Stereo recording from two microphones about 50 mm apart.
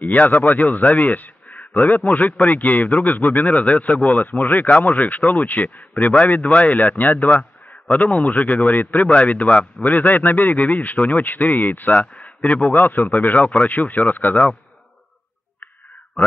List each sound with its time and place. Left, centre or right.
0.0 s a man's voice: left